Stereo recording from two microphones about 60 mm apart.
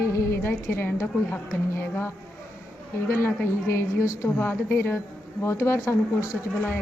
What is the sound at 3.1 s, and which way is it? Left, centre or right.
A woman's voice, left.